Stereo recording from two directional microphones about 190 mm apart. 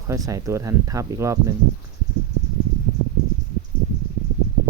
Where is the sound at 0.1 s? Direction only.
15° right (ahead or behind).